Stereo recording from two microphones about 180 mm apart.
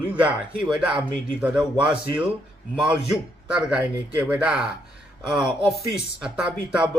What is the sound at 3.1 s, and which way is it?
A man's voice, 5° right (ahead or behind).